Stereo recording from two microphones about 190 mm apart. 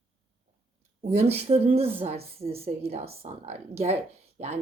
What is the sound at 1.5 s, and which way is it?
Speech, 30° right (ahead or behind).